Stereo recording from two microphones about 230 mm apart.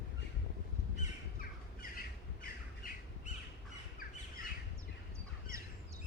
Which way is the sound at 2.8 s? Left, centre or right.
Left.